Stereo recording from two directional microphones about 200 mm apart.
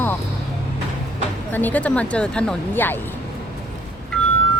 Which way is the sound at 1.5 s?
10° left (ahead or behind).